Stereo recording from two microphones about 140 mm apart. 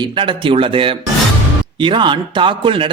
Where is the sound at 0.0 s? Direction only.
35° right (ahead or behind).